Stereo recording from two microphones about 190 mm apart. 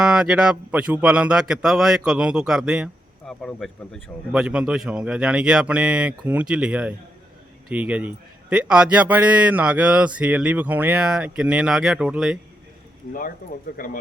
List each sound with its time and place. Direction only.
0.0 s a man's voice: 5° right (ahead or behind)
13.7 s speech: 45° left (ahead or behind)